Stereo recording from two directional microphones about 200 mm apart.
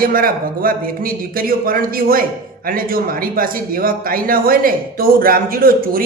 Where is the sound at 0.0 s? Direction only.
45° right (ahead or behind).